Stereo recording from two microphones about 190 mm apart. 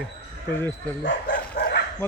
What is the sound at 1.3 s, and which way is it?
Bow-wow, 60° left (ahead or behind).